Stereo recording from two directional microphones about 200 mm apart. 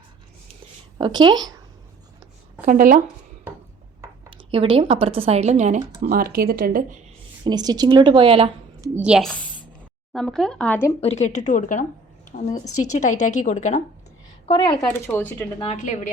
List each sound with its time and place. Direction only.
0.9 s speech: 20° right (ahead or behind)
2.6 s speech: 45° right (ahead or behind)
4.5 s speech: 25° right (ahead or behind); by 7.0 s 45° right (ahead or behind)
7.4 s a woman's voice: 20° right (ahead or behind)
9.0 s speech: 5° right (ahead or behind)
11.0 s speech: 35° left (ahead or behind)
12.6 s a woman's voice: 90° left
12.9 s speech: 35° left (ahead or behind)
14.4 s speech: 25° left (ahead or behind)
14.8 s speech: 10° left (ahead or behind)
15.6 s speech: 35° left (ahead or behind)